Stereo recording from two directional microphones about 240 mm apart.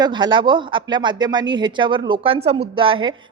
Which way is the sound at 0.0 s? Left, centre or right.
Centre.